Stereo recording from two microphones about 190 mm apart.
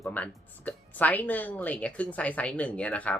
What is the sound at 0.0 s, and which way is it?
Speech, 10° left (ahead or behind).